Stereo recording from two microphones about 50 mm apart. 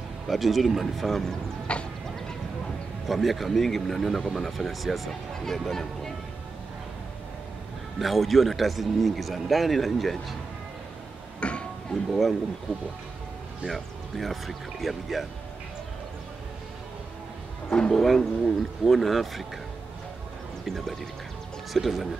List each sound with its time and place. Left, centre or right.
0.3 s speech: centre
1.7 s speech: left
3.1 s speech: centre
8.0 s speech: centre
11.3 s a sound: left
12.1 s speech: centre
13.7 s speech: centre
17.6 s speech: centre
17.9 s speech: centre
20.6 s speech: centre